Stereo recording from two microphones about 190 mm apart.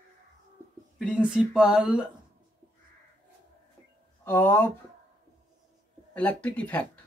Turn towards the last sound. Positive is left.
turn(degrees=5)  # may be behind; listen again after turning